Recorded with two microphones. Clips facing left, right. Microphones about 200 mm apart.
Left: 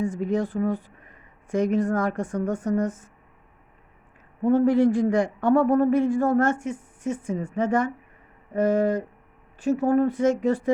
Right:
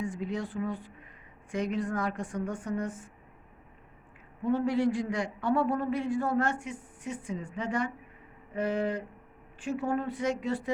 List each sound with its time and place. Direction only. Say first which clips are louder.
0.0 s a man's voice: left 9 dB; 45° left (ahead or behind)
4.4 s a man's voice: left 8 dB; 45° left (ahead or behind)